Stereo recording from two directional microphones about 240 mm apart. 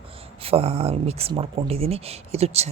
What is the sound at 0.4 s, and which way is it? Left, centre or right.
Speech, right.